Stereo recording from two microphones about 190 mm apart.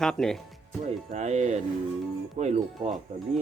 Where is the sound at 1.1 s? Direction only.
35° right (ahead or behind).